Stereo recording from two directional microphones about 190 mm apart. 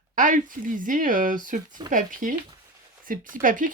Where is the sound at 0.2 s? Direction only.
45° right (ahead or behind).